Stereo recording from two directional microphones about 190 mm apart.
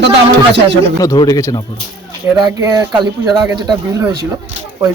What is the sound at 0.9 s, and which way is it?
Speech, 20° left (ahead or behind).